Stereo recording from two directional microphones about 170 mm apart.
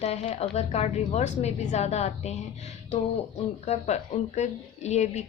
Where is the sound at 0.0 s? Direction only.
40° left (ahead or behind).